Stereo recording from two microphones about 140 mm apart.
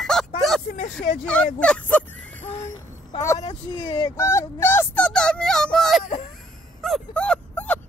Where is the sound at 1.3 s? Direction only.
10° left (ahead or behind).